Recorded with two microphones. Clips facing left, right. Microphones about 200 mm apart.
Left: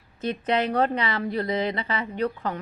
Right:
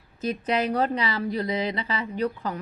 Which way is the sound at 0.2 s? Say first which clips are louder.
Left 1 dB; 30° left (ahead or behind).